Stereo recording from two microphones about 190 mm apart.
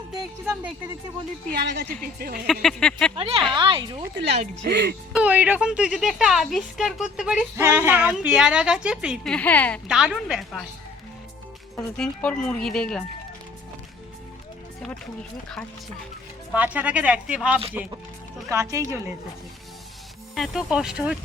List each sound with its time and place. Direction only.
0.2 s speech: 15° right (ahead or behind)
1.6 s speech: 60° right (ahead or behind)
2.5 s speech: centre (ahead or behind)
3.2 s a woman's voice: 30° right (ahead or behind)
4.7 s speech: 60° right (ahead or behind)
5.1 s speech: 5° right (ahead or behind); by 9.8 s 10° left (ahead or behind)
9.8 s speech: 5° right (ahead or behind)
11.9 s speech: 5° left (ahead or behind)
16.6 s speech: 10° right (ahead or behind)
20.3 s speech: centre (ahead or behind)